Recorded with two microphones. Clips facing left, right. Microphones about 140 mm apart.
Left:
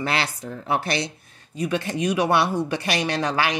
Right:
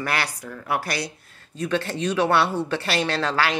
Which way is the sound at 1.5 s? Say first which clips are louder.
Even; 15° left (ahead or behind).